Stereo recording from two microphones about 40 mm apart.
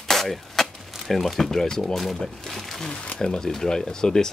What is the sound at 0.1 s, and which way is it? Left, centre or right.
Speech, centre.